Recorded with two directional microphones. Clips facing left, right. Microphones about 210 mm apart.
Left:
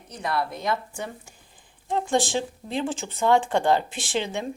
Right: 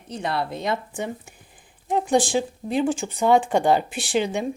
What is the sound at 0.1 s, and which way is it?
A woman's voice, 25° right (ahead or behind).